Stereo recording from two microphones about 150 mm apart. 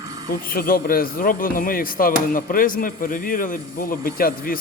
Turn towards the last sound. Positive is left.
turn(degrees=75)  # may be behind; listen again after turning